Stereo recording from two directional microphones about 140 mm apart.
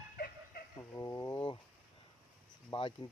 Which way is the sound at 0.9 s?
25° left (ahead or behind).